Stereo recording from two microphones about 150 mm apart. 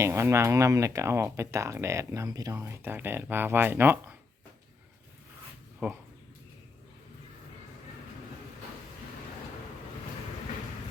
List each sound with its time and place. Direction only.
0.0 s speech: 20° right (ahead or behind)
5.8 s speech: 10° right (ahead or behind)